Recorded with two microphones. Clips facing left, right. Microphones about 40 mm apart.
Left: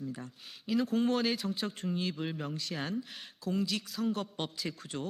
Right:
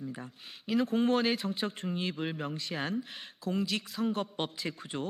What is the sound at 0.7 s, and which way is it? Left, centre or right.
Speech, centre.